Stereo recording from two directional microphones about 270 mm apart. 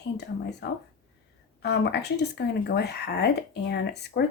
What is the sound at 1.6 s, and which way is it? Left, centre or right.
Speech, left.